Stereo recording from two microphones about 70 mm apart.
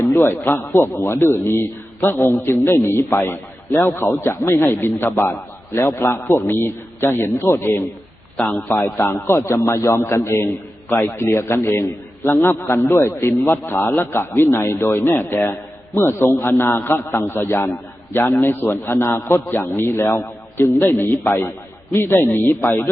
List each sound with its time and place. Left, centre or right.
0.0 s a man's voice: left
8.4 s a man's voice: left